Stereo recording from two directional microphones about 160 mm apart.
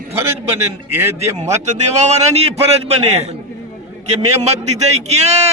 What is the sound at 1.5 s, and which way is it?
A man's voice, 45° right (ahead or behind).